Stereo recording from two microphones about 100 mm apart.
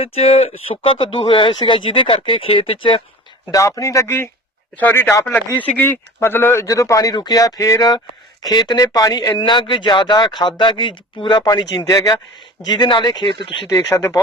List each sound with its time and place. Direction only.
0.0 s speech: 90° left
0.9 s speech: 60° left (ahead or behind)
3.5 s speech: 35° left (ahead or behind)
9.3 s speech: 50° left (ahead or behind)
13.9 s speech: 25° left (ahead or behind)